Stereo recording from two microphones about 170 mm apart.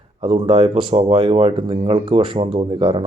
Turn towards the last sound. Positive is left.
turn(degrees=-30)  # may be behind; listen again after turning